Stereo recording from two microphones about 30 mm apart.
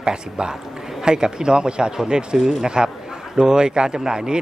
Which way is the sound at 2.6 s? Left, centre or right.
Right.